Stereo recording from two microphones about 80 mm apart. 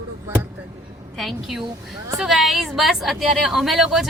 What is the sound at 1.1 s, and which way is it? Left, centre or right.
A woman's voice, centre.